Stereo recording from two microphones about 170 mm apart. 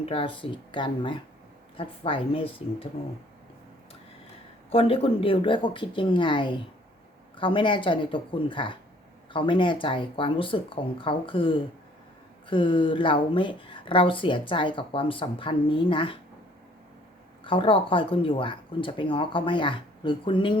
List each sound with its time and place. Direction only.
0.0 s a woman's voice: 30° left (ahead or behind)
4.7 s a woman's voice: 35° left (ahead or behind)
17.4 s a woman's voice: 30° left (ahead or behind)